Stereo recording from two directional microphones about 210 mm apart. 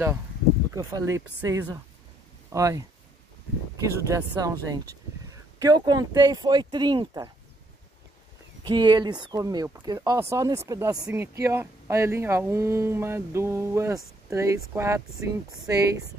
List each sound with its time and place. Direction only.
0.7 s speech: 15° right (ahead or behind)
5.6 s speech: 20° right (ahead or behind)
8.6 s speech: 20° right (ahead or behind)